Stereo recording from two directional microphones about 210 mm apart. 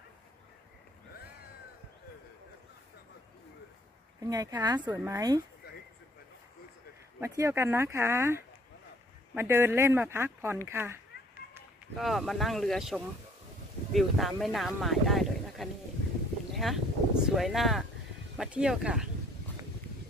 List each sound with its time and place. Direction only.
4.2 s speech: 15° right (ahead or behind)
7.2 s speech: 15° right (ahead or behind)
12.0 s speech: centre (ahead or behind)